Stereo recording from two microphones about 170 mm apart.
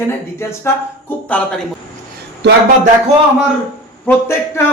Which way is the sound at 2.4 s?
80° right.